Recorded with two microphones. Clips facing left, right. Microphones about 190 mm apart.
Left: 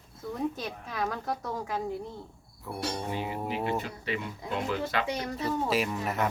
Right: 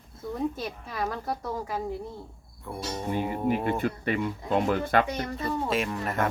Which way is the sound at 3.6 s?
55° right (ahead or behind).